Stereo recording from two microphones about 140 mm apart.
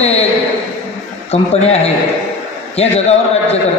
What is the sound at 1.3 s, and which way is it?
A man's voice, 50° left (ahead or behind).